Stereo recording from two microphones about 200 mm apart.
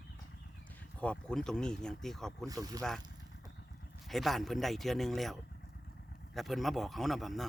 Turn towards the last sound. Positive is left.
turn(degrees=0)  # may be behind; listen again after turning